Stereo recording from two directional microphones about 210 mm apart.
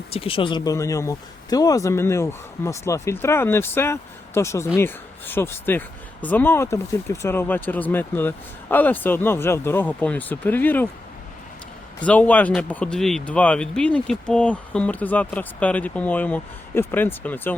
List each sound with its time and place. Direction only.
0.1 s speech: 25° left (ahead or behind); by 10.8 s 10° left (ahead or behind)
12.0 s speech: 5° left (ahead or behind)